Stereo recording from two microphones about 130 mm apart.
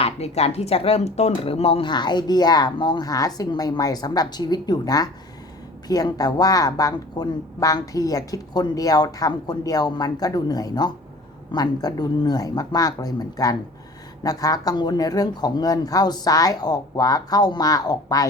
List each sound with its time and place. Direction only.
0.0 s speech: 55° left (ahead or behind)
1.9 s a woman's voice: 35° left (ahead or behind)